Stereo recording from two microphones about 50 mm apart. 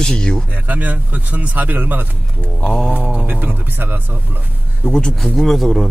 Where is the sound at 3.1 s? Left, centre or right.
Right.